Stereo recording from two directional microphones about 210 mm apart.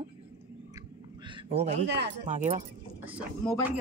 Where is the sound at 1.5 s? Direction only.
30° right (ahead or behind).